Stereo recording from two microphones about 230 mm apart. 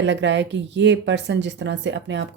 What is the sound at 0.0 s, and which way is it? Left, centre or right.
Speech, right.